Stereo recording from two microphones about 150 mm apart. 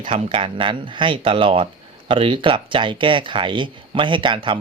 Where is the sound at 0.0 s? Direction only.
40° right (ahead or behind).